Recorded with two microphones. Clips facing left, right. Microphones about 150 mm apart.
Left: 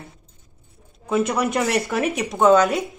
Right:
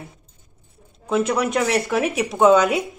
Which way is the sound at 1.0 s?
Centre (ahead or behind).